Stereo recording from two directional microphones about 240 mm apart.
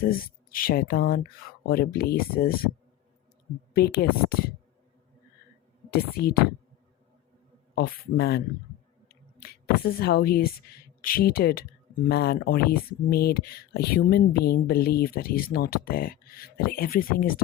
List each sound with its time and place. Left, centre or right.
0.5 s speech: left
3.8 s speech: left
5.9 s speech: left
7.8 s speech: left